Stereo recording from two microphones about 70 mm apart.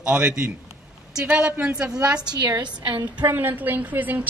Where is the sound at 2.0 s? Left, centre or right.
Right.